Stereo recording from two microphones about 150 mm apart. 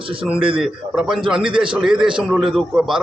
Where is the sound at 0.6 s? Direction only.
5° right (ahead or behind).